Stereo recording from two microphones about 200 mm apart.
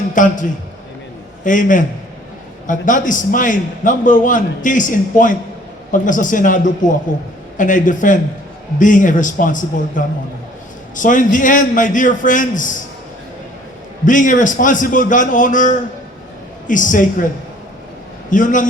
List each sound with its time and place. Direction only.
0.1 s a man's voice: 40° left (ahead or behind)
1.5 s a man's voice: 40° left (ahead or behind)
14.0 s a man's voice: 40° left (ahead or behind)
18.3 s a man's voice: 40° left (ahead or behind)